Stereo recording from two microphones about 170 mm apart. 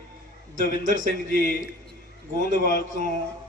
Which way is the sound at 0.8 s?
50° right (ahead or behind).